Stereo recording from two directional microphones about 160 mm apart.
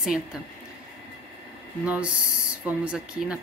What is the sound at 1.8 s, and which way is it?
Speech, 5° right (ahead or behind).